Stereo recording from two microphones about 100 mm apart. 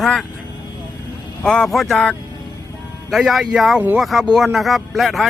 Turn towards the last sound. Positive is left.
turn(degrees=0)  # may be behind; listen again after turning